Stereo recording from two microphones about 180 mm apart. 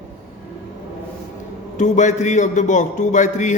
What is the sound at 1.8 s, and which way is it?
Speech, 40° left (ahead or behind).